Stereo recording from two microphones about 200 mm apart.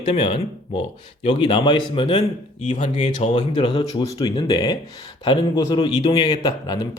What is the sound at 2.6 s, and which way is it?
Speech, 35° left (ahead or behind).